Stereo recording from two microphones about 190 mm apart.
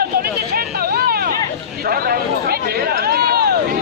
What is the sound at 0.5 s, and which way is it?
Vehicle, 50° right (ahead or behind).